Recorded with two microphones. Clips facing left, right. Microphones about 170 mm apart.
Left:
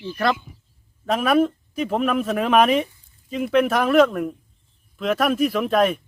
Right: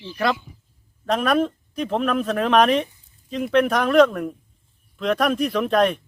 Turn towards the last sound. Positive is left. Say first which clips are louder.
# even
turn(degrees=5)  # may be behind; listen again after turning